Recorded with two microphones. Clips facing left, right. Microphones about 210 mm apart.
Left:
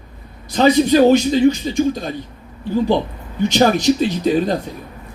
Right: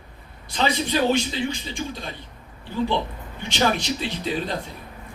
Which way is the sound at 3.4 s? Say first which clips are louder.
Left 9 dB; 40° left (ahead or behind).